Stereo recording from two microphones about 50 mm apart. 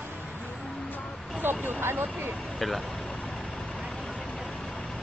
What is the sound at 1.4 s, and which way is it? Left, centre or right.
Speech, right.